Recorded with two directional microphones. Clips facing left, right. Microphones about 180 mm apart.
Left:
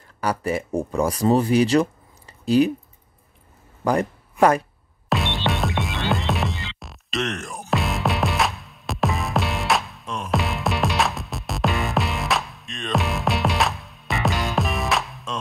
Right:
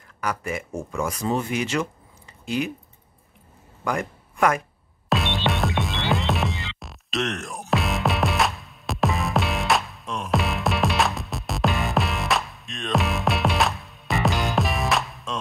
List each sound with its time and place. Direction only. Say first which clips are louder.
0.2 s speech: left 5 dB; 35° left (ahead or behind)
3.8 s speech: left 6 dB; 35° left (ahead or behind)
5.1 s music: even; centre (ahead or behind)